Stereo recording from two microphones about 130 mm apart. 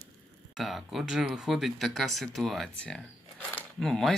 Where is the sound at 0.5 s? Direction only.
Centre (ahead or behind).